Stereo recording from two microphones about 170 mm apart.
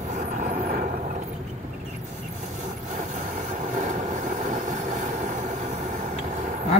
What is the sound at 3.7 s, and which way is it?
Vehicle, 45° right (ahead or behind).